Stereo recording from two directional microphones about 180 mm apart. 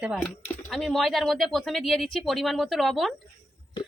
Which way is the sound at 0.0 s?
5° right (ahead or behind).